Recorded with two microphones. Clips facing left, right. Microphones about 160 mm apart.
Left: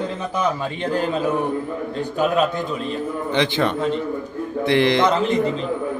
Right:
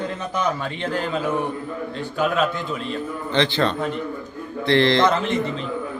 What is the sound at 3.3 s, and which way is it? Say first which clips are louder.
A man's voice: even; 15° left (ahead or behind).